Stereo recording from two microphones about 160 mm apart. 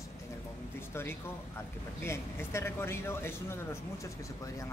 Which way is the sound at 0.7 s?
15° left (ahead or behind).